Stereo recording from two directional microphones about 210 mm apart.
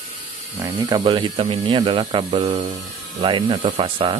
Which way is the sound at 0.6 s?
20° right (ahead or behind).